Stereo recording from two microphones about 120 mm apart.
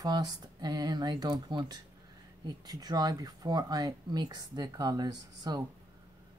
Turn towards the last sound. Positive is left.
turn(degrees=-35)  # may be behind; listen again after turning